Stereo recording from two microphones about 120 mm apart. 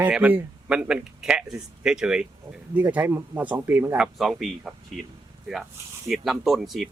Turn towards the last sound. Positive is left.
turn(degrees=0)  # may be behind; listen again after turning